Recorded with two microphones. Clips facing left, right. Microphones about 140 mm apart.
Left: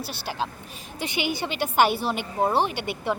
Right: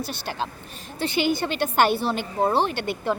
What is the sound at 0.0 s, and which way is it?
A woman's voice, 5° left (ahead or behind).